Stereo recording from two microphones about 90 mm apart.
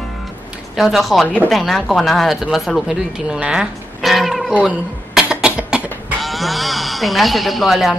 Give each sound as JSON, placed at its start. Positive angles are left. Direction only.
{"t": 0.7, "sound": "speech", "side_deg": 0}
{"t": 1.2, "sound": "speech", "side_deg": -15}
{"t": 1.5, "sound": "speech", "side_deg": 0}
{"t": 4.6, "sound": "cough", "side_deg": -5}
{"t": 6.2, "sound": "speech", "side_deg": 0}